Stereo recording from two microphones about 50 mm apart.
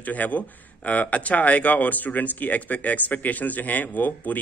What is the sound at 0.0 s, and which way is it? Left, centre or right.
Speech, left.